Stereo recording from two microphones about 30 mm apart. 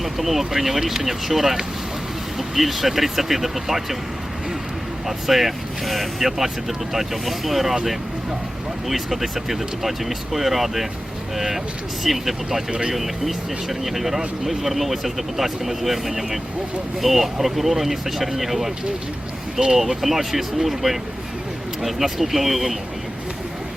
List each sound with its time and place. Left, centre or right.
0.0 s speech: centre
5.0 s speech: centre
8.9 s speech: centre
19.5 s speech: centre
19.8 s speech: centre